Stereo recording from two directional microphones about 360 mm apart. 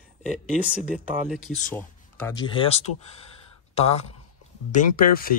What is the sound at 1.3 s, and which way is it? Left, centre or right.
Speech, centre.